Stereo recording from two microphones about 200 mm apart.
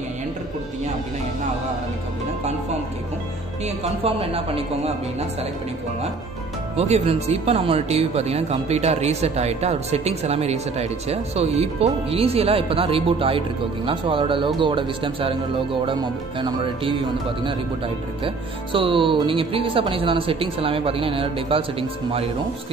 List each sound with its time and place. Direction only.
3.6 s speech: 30° right (ahead or behind)
6.8 s speech: 30° right (ahead or behind)
18.2 s speech: 25° right (ahead or behind)